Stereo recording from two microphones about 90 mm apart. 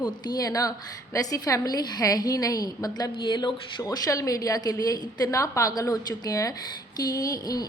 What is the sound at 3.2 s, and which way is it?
A woman's voice, 60° left (ahead or behind).